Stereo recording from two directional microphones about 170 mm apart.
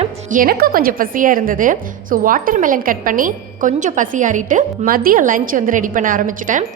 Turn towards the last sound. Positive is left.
turn(degrees=-50)  # may be behind; listen again after turning